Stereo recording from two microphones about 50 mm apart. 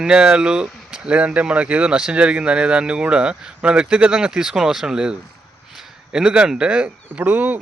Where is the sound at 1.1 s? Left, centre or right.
Right.